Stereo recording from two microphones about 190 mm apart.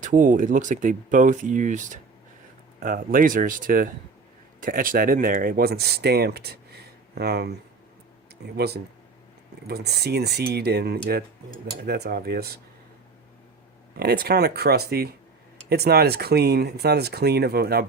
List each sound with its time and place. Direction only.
0.0 s speech: 40° right (ahead or behind)
8.5 s speech: 60° right (ahead or behind)
13.9 s speech: 55° right (ahead or behind)